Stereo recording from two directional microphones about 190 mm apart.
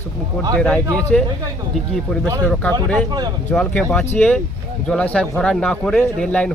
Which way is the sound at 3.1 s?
20° right (ahead or behind).